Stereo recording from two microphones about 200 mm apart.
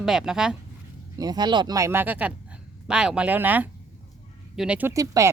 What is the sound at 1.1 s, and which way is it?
Speech, 20° right (ahead or behind).